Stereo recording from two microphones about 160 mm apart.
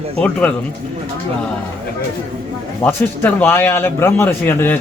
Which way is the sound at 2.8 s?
10° left (ahead or behind).